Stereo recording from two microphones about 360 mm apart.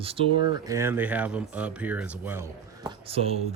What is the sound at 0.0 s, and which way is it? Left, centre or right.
Speech, centre.